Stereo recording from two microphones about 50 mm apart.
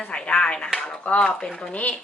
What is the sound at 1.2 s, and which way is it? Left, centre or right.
Speech, centre.